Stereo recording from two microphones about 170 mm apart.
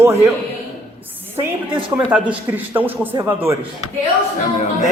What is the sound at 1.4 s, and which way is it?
A man's voice, 10° right (ahead or behind).